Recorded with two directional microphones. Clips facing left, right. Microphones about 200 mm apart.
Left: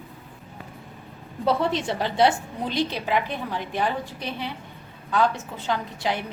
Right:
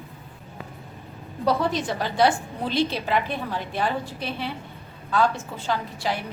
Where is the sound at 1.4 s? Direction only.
25° left (ahead or behind).